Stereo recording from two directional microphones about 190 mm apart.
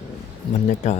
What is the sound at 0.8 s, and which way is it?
Speech, 35° left (ahead or behind).